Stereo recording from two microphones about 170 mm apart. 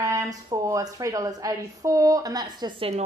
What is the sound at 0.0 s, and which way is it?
Speech, 20° right (ahead or behind).